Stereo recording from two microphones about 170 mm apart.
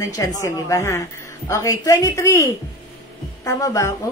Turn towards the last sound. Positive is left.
turn(degrees=20)  # may be behind; listen again after turning